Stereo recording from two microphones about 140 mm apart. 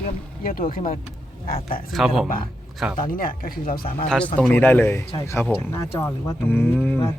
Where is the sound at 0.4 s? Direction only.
90° left.